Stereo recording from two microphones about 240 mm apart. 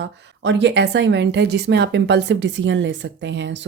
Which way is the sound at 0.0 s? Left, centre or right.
Right.